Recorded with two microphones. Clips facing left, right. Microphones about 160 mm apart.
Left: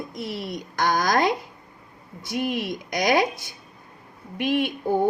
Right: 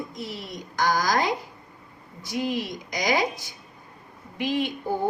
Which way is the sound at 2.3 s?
60° left (ahead or behind).